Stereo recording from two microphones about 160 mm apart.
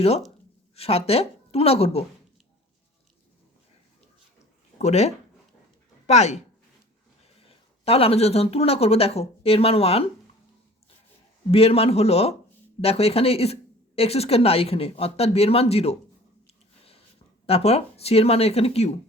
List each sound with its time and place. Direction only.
0.8 s speech: 40° left (ahead or behind)
4.8 s speech: 45° left (ahead or behind)
11.5 s speech: 40° left (ahead or behind)
17.4 s speech: 40° left (ahead or behind)